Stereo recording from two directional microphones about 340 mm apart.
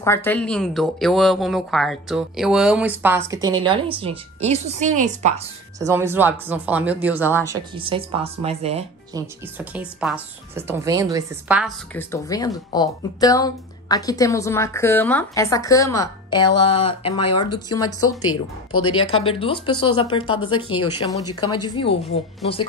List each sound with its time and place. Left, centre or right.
0.0 s a woman's voice: centre; by 5.4 s right
5.9 s speech: centre
9.6 s a woman's voice: centre
18.0 s speech: left
19.2 s a woman's voice: centre